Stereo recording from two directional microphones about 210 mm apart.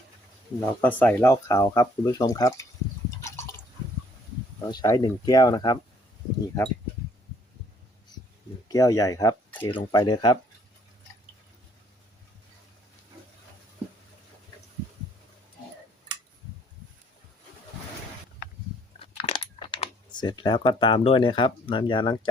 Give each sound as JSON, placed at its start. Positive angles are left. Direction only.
{"t": 0.6, "sound": "speech", "side_deg": 10}
{"t": 3.2, "sound": "drip", "side_deg": 10}
{"t": 4.6, "sound": "speech", "side_deg": 20}
{"t": 8.7, "sound": "speech", "side_deg": 15}
{"t": 18.9, "sound": "speech", "side_deg": 25}